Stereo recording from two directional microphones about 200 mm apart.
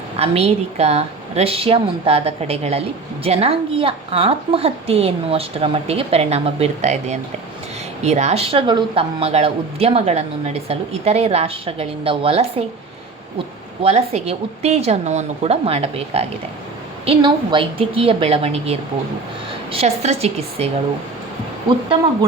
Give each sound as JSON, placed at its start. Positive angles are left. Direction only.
{"t": 0.2, "sound": "a woman's voice", "side_deg": -30}
{"t": 13.8, "sound": "a woman's voice", "side_deg": -30}